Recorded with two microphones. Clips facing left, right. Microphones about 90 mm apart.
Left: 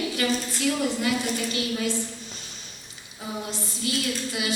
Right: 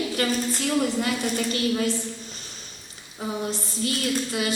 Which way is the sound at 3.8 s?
45° right (ahead or behind).